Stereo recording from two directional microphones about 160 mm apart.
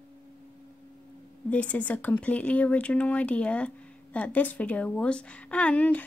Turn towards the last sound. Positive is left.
turn(degrees=10)  # may be behind; listen again after turning